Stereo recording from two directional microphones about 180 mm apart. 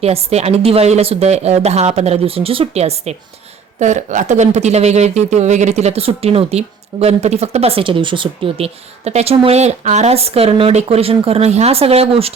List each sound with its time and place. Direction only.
0.0 s speech: 35° right (ahead or behind)